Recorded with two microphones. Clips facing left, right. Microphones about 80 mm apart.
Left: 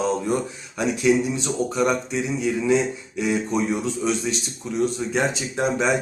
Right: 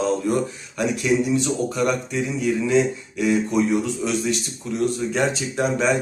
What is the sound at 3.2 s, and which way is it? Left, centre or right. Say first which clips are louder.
Speech: right 3 dB; centre.